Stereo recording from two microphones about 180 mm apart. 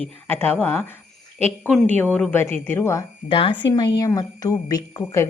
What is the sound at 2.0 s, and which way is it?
A woman's voice, 5° left (ahead or behind).